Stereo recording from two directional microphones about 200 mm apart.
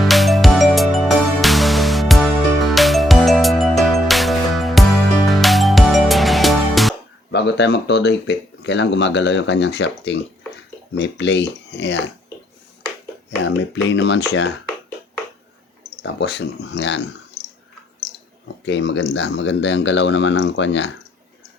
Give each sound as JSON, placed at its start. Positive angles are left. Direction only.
{"t": 0.0, "sound": "music", "side_deg": 0}
{"t": 7.3, "sound": "speech", "side_deg": 60}
{"t": 13.4, "sound": "speech", "side_deg": 65}
{"t": 16.0, "sound": "speech", "side_deg": 60}
{"t": 18.4, "sound": "speech", "side_deg": 65}